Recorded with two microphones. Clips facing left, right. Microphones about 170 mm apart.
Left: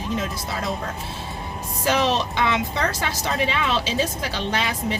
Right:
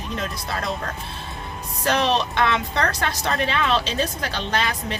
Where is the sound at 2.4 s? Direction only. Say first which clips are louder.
Even; 10° left (ahead or behind).